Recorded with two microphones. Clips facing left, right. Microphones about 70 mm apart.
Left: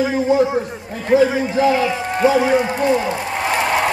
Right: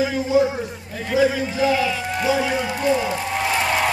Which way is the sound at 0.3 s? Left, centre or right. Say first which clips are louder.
Left 1 dB; left.